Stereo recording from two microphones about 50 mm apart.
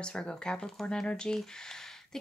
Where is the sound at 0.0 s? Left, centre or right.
Centre.